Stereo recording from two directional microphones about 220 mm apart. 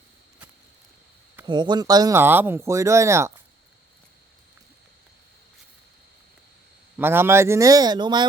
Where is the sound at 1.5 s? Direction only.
20° right (ahead or behind).